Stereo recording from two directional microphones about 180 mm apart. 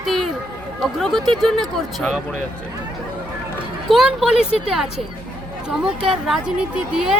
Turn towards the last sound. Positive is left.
turn(degrees=-5)  # may be behind; listen again after turning